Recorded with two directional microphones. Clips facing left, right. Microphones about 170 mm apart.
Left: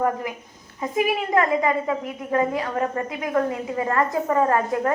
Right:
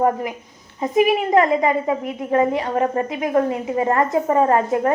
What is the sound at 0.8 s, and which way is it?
A woman's voice, 25° right (ahead or behind).